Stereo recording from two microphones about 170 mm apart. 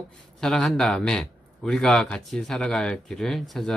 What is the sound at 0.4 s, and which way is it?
Speech, 5° left (ahead or behind).